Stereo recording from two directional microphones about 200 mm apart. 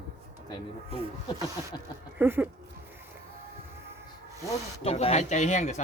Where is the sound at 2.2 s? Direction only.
10° right (ahead or behind).